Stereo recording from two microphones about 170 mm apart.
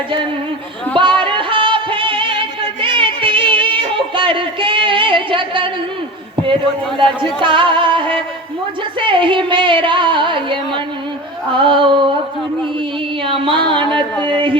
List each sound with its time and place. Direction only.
0.9 s music: 30° right (ahead or behind)
7.4 s music: 30° right (ahead or behind)
13.2 s music: 30° right (ahead or behind)